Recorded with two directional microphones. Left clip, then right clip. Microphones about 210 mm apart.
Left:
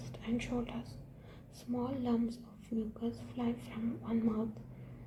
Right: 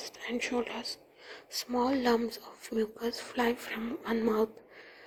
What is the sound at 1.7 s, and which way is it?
Speech, 30° right (ahead or behind).